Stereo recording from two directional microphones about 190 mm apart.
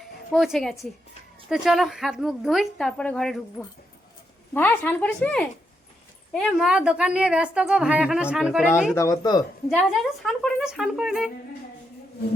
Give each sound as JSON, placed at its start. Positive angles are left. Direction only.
{"t": 0.0, "sound": "a woman's voice", "side_deg": 0}
{"t": 4.5, "sound": "a woman's voice", "side_deg": 10}
{"t": 8.9, "sound": "speech", "side_deg": 15}
{"t": 9.6, "sound": "a woman's voice", "side_deg": 0}